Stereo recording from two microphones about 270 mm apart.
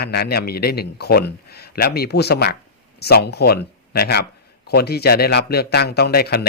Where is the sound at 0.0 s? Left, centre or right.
Left.